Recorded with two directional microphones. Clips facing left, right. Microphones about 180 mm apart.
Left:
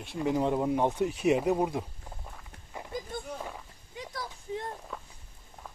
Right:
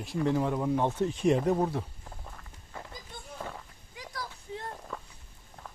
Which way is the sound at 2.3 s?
15° left (ahead or behind).